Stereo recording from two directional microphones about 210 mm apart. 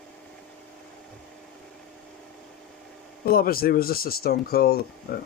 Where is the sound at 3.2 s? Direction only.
45° left (ahead or behind).